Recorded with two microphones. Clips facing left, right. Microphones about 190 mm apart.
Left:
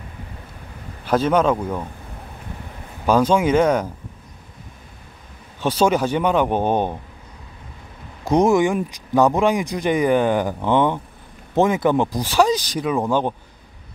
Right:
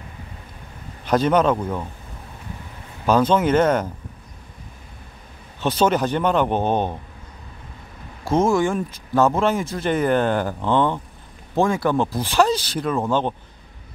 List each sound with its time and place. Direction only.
1.0 s speech: 5° left (ahead or behind)
3.1 s speech: 10° left (ahead or behind)
5.6 s speech: 10° left (ahead or behind)
8.2 s speech: 15° left (ahead or behind)